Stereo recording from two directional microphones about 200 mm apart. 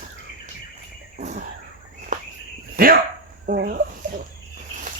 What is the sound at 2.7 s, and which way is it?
Dog, 45° right (ahead or behind).